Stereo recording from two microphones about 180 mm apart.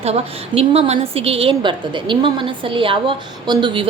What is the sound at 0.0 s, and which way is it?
A woman's voice, 35° right (ahead or behind).